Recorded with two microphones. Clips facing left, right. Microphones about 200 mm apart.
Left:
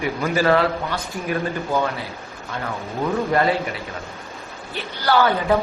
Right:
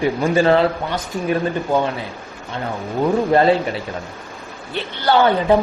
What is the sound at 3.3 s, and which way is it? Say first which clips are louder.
Speech: right 6 dB; 25° right (ahead or behind).